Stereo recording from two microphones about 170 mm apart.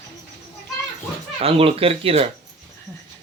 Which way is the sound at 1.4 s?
35° right (ahead or behind).